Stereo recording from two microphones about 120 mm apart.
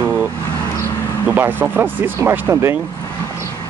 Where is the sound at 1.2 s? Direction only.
15° right (ahead or behind).